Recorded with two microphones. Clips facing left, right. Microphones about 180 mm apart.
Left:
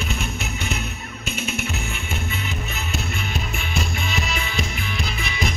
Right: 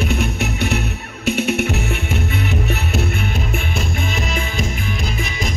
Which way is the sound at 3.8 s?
50° right (ahead or behind).